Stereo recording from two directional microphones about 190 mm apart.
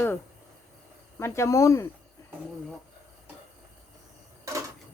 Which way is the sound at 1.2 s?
15° left (ahead or behind).